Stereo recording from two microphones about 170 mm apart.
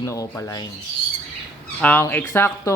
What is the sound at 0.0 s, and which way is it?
Rub, 20° left (ahead or behind).